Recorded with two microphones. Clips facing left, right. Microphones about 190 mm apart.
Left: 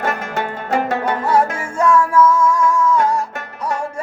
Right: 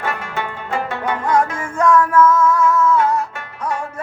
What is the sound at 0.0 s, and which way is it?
Music, 40° left (ahead or behind).